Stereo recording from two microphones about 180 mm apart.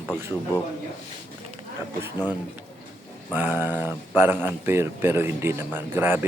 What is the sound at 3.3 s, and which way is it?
Speech, 10° right (ahead or behind).